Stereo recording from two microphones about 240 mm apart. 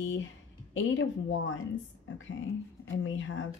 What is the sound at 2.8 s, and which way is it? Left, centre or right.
Speech, left.